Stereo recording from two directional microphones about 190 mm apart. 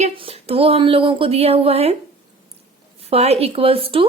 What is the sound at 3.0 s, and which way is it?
A woman's voice, 35° right (ahead or behind).